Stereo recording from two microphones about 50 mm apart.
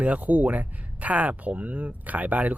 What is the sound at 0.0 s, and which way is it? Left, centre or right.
Speech, right.